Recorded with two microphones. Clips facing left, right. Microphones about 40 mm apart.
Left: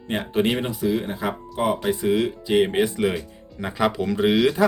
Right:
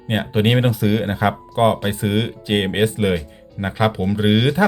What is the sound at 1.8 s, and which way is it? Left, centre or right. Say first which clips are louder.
Speech: even; right.